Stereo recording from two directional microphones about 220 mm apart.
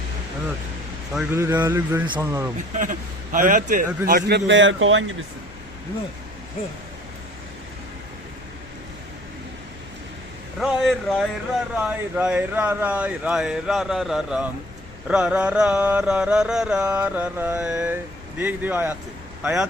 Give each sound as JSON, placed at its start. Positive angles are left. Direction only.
{"t": 1.1, "sound": "speech", "side_deg": -10}
{"t": 2.7, "sound": "a man's voice", "side_deg": -35}
{"t": 10.6, "sound": "music", "side_deg": 0}